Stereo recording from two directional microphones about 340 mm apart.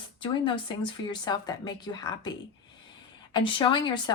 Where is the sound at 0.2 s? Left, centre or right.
Centre.